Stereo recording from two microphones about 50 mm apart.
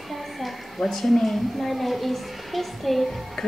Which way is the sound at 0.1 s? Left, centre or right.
Centre.